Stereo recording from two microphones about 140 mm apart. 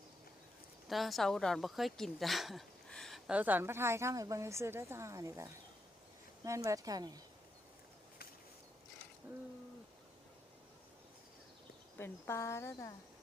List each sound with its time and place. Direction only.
0.9 s speech: centre (ahead or behind)
3.3 s speech: 10° right (ahead or behind)
11.9 s speech: 15° left (ahead or behind)